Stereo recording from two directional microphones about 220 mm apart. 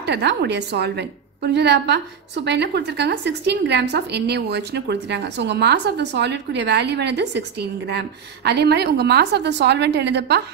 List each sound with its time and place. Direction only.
0.0 s a woman's voice: 50° right (ahead or behind)